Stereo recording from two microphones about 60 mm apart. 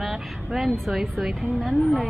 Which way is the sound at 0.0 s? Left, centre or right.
Centre.